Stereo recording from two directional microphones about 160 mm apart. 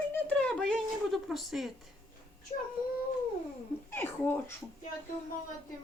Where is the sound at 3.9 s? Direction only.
15° left (ahead or behind).